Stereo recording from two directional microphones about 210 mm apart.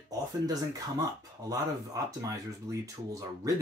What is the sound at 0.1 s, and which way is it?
Speech, 15° right (ahead or behind).